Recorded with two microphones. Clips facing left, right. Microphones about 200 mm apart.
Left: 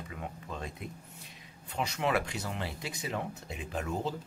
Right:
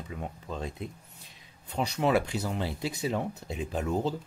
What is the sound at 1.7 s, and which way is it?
Speech, 35° right (ahead or behind).